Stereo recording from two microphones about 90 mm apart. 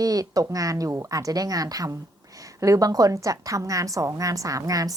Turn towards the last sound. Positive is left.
turn(degrees=-40)  # may be behind; listen again after turning